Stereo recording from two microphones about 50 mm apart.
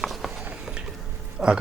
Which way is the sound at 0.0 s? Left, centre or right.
Centre.